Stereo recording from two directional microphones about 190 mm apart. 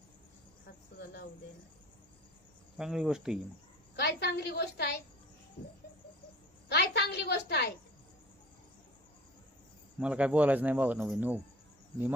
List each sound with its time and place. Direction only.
2.7 s speech: centre (ahead or behind)
3.9 s a woman's voice: 60° left (ahead or behind)
6.7 s a woman's voice: 60° left (ahead or behind)
10.0 s speech: 5° right (ahead or behind)